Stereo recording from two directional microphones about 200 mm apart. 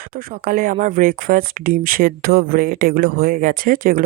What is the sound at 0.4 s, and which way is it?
Speech, 45° right (ahead or behind).